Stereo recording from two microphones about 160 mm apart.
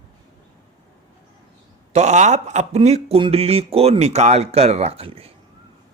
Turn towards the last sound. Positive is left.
turn(degrees=-35)  # may be behind; listen again after turning